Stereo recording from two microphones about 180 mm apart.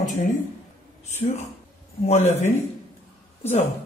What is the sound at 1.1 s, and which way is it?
Speech, 40° left (ahead or behind).